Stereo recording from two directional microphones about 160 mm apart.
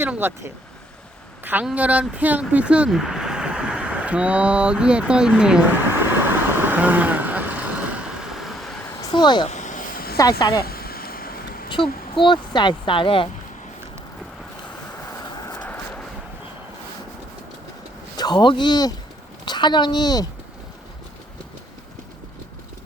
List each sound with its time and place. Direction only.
0.0 s speech: 15° right (ahead or behind)
1.5 s a sound: 10° right (ahead or behind)
9.0 s speech: 30° left (ahead or behind)
9.5 s a sound: 50° left (ahead or behind)
10.2 s speech: 25° left (ahead or behind)
10.7 s a sound: 70° left (ahead or behind)
11.7 s speech: 30° left (ahead or behind)
15.5 s vehicle: 10° left (ahead or behind)
18.2 s speech: 30° left (ahead or behind)